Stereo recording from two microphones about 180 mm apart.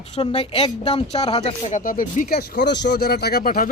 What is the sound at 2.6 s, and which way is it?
Speech, 75° left (ahead or behind).